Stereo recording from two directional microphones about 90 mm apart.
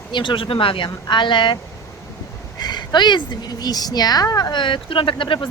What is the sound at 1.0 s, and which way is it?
Speech, 60° left (ahead or behind).